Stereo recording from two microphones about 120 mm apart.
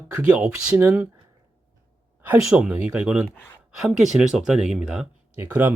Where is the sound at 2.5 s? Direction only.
5° right (ahead or behind).